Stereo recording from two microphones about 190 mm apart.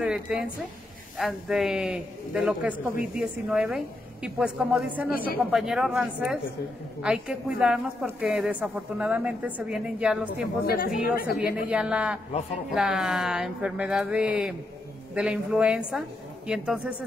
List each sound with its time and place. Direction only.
0.0 s a man's voice: 5° right (ahead or behind)
11.3 s a man's voice: 5° right (ahead or behind)